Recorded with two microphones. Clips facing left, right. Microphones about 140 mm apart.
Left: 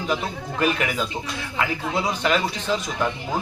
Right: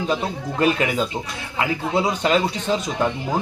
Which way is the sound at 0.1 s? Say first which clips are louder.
Right 2 dB; 25° right (ahead or behind).